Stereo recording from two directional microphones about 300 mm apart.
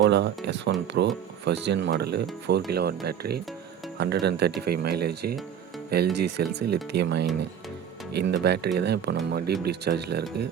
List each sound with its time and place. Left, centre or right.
0.0 s speech: right